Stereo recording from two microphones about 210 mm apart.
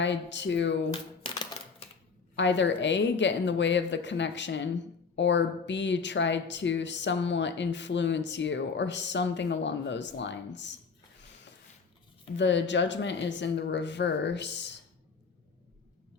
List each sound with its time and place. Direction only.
0.0 s speech: 60° left (ahead or behind)
1.2 s a sound: 25° left (ahead or behind)
2.3 s speech: 60° left (ahead or behind)
12.4 s speech: 60° left (ahead or behind)